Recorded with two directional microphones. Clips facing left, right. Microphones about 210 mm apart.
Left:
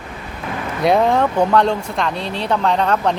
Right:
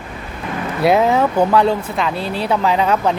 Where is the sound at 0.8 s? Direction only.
5° right (ahead or behind).